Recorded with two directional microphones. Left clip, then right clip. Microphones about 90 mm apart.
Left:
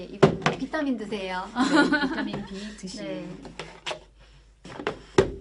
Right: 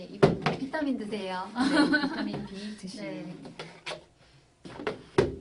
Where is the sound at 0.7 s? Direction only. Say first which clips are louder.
Left 3 dB; 35° left (ahead or behind).